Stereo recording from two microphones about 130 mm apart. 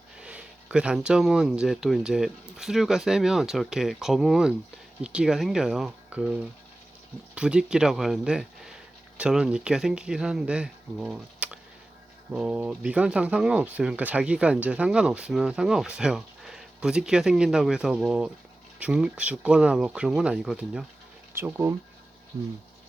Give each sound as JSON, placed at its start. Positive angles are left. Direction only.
{"t": 0.2, "sound": "speech", "side_deg": -10}
{"t": 7.3, "sound": "speech", "side_deg": -5}
{"t": 21.3, "sound": "speech", "side_deg": -15}